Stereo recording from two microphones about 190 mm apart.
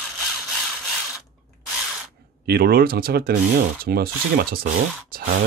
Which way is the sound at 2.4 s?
55° right (ahead or behind).